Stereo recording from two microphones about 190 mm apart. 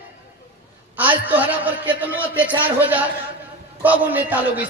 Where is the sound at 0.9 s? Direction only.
10° right (ahead or behind).